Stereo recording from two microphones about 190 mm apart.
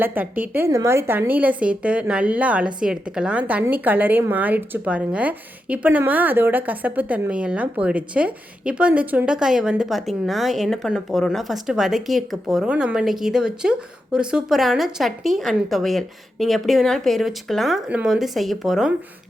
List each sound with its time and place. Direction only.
0.0 s a woman's voice: 10° right (ahead or behind)